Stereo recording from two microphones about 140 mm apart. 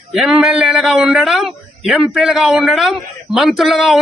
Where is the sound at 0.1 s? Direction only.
Centre (ahead or behind).